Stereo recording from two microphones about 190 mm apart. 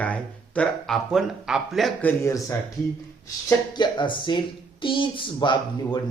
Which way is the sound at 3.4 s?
25° left (ahead or behind).